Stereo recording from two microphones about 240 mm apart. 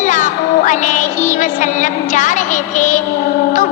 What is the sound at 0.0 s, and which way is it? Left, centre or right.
Music, left.